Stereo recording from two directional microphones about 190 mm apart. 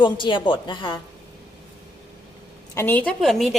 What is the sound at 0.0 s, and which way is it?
Speech, 25° left (ahead or behind).